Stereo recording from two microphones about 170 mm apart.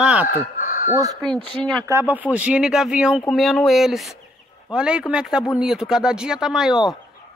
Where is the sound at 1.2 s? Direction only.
5° left (ahead or behind).